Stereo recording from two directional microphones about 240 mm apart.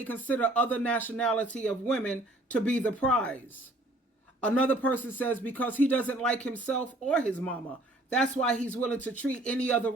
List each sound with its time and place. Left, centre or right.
0.3 s speech: centre
4.4 s speech: centre